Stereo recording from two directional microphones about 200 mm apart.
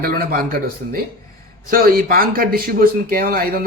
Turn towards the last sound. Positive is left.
turn(degrees=-50)  # may be behind; listen again after turning